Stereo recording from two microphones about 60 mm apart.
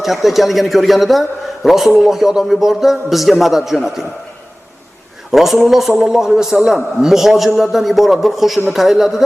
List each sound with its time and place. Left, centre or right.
0.0 s a man's voice: centre
5.3 s a man's voice: centre